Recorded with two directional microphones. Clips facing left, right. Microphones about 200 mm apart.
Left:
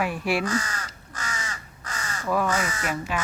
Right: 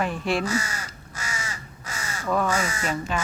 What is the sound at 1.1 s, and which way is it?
Crow, 10° right (ahead or behind).